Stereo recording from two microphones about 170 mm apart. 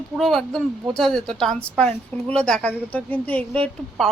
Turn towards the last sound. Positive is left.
turn(degrees=5)  # may be behind; listen again after turning